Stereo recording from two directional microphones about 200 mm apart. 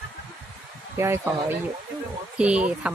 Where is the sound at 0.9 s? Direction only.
10° right (ahead or behind).